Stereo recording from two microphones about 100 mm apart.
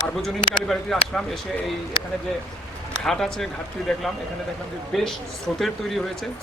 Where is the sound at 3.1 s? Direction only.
5° left (ahead or behind).